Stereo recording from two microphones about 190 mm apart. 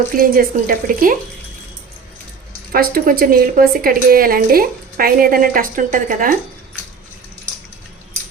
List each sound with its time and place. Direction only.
0.1 s a woman's voice: 50° right (ahead or behind)
2.7 s a woman's voice: 50° right (ahead or behind)